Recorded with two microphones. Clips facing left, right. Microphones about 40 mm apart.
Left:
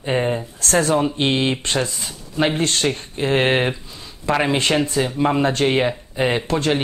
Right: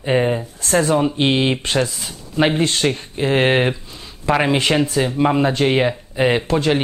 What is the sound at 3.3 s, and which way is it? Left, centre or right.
Speech, centre.